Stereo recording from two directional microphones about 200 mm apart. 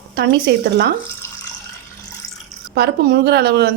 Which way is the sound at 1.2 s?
15° left (ahead or behind).